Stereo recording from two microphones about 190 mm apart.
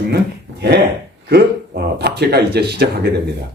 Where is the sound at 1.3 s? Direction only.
60° right (ahead or behind).